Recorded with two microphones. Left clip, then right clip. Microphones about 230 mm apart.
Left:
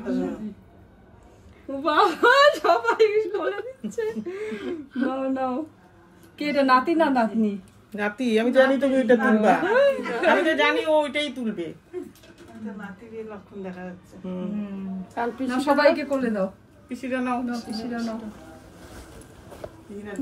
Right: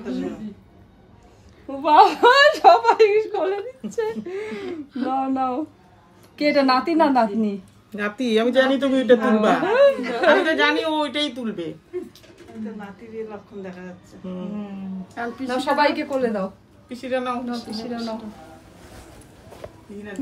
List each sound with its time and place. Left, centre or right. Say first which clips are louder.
1.8 s a woman's voice: right 6 dB; centre
13.1 s a woman's voice: right 5 dB; centre
17.0 s a woman's voice: right 2 dB; right
17.6 s a woman's voice: right 2 dB; centre